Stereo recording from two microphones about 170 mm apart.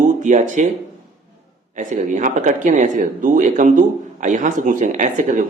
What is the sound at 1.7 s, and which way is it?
Speech, 50° right (ahead or behind).